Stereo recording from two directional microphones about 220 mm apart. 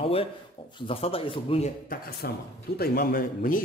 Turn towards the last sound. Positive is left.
turn(degrees=40)  # may be behind; listen again after turning